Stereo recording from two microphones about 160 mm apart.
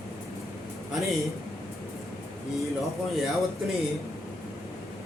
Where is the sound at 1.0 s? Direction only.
Centre (ahead or behind).